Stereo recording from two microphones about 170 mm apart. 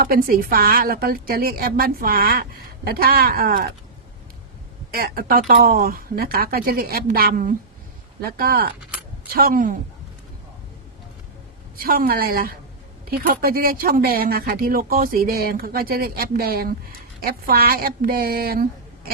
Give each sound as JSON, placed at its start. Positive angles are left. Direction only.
{"t": 0.0, "sound": "a woman's voice", "side_deg": -60}
{"t": 4.9, "sound": "a woman's voice", "side_deg": -60}
{"t": 11.8, "sound": "a woman's voice", "side_deg": -60}